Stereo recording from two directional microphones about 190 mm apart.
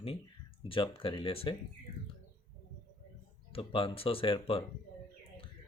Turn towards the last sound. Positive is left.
turn(degrees=30)  # may be behind; listen again after turning